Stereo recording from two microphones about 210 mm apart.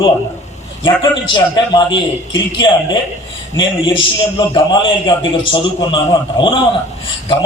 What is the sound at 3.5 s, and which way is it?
A man's voice, 20° left (ahead or behind).